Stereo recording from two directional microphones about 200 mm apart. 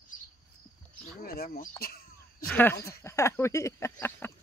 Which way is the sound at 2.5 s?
10° left (ahead or behind).